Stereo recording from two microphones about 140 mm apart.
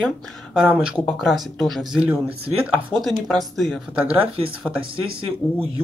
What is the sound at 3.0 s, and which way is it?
Speech, centre (ahead or behind).